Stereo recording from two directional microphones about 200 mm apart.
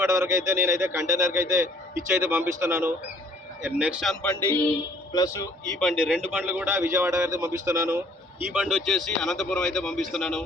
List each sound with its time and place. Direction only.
0.0 s a man's voice: 15° right (ahead or behind); by 5.5 s 20° left (ahead or behind)
5.8 s a man's voice: centre (ahead or behind)